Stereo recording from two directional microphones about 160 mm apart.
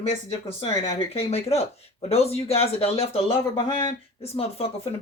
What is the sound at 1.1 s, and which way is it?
Speech, 40° left (ahead or behind).